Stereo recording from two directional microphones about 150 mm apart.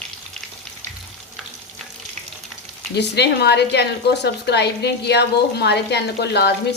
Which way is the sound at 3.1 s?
90° left.